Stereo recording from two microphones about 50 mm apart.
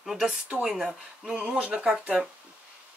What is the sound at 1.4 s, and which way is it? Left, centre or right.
Speech, right.